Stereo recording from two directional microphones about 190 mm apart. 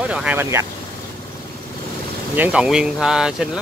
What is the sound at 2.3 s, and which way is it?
Speech, 5° right (ahead or behind).